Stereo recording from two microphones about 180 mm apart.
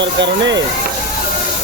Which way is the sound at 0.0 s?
85° right.